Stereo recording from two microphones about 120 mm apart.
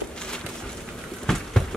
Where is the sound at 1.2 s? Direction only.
5° left (ahead or behind).